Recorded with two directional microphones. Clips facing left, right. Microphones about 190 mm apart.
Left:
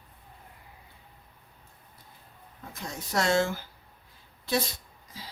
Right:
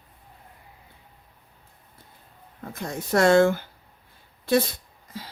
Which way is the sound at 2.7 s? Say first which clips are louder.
Right 8 dB; 55° right (ahead or behind).